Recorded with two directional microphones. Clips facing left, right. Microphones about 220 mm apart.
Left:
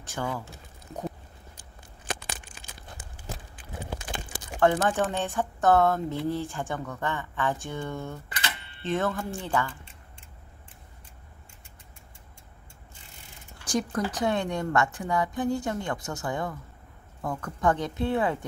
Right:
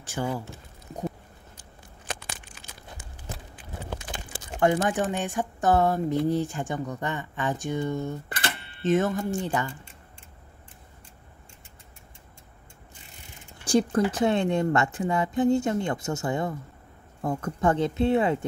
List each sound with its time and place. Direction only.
0.2 s speech: 15° right (ahead or behind)
4.6 s speech: 15° right (ahead or behind)
13.6 s speech: 30° right (ahead or behind)